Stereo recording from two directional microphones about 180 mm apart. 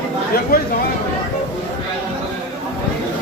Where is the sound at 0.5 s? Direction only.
55° left (ahead or behind).